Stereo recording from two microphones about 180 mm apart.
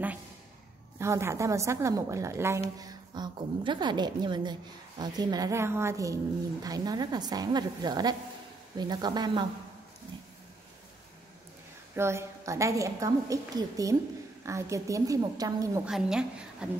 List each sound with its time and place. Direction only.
0.9 s a woman's voice: 15° right (ahead or behind)
11.9 s a woman's voice: 15° right (ahead or behind)
15.8 s a woman's voice: 5° right (ahead or behind)